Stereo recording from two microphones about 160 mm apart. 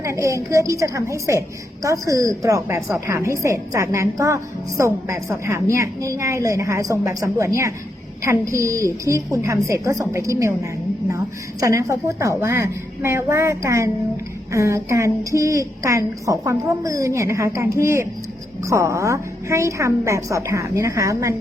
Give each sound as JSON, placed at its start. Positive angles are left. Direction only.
{"t": 0.0, "sound": "a woman's voice", "side_deg": -20}